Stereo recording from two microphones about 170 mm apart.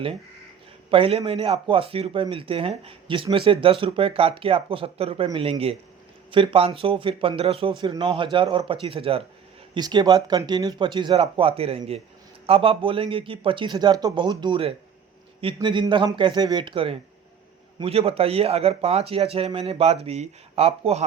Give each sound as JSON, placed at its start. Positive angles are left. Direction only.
{"t": 0.9, "sound": "speech", "side_deg": -30}